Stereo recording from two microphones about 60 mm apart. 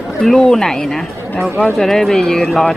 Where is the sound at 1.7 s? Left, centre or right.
Centre.